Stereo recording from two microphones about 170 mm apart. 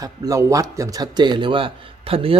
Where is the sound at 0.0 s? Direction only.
20° right (ahead or behind).